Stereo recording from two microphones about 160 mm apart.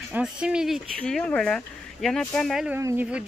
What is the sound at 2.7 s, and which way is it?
Speech, 15° right (ahead or behind).